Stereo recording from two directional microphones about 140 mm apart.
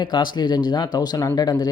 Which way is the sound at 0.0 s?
30° left (ahead or behind).